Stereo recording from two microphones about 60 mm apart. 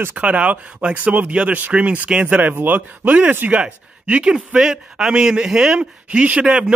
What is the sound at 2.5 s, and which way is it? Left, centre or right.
Speech, right.